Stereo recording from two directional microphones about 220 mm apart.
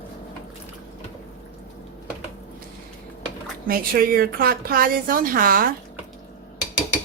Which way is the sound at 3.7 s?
40° right (ahead or behind).